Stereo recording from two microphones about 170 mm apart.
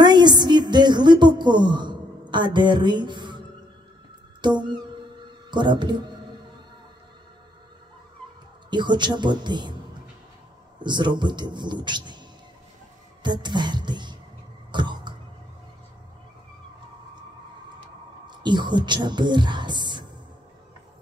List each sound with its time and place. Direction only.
0.0 s speech: 25° right (ahead or behind)
4.4 s music: 25° right (ahead or behind)
5.5 s a man's voice: 25° right (ahead or behind)
8.6 s a man's voice: 25° right (ahead or behind)
10.8 s a man's voice: 25° right (ahead or behind)
13.2 s a man's voice: 25° right (ahead or behind)
14.7 s cough: 25° right (ahead or behind)
18.2 s speech: 25° right (ahead or behind)